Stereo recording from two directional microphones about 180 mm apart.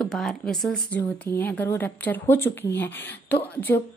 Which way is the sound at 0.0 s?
5° left (ahead or behind).